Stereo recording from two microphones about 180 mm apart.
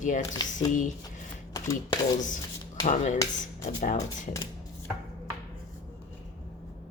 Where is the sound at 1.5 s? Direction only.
20° left (ahead or behind).